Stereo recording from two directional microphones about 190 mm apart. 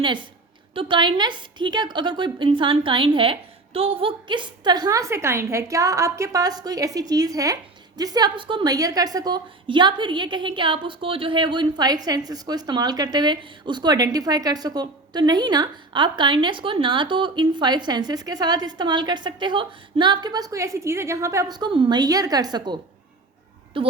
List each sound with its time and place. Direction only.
0.0 s a woman's voice: 25° right (ahead or behind)